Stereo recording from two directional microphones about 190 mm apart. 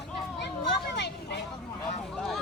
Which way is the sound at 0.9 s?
65° left (ahead or behind).